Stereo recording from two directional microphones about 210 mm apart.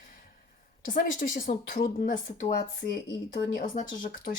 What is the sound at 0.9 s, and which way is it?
Speech, 40° left (ahead or behind).